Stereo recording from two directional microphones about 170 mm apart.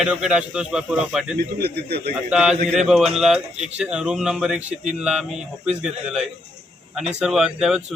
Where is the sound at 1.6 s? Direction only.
70° right (ahead or behind).